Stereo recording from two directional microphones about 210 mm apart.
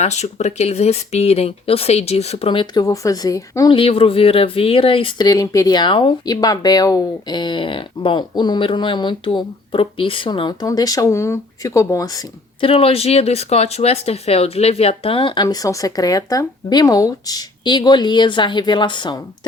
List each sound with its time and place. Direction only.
0.0 s speech: 30° left (ahead or behind)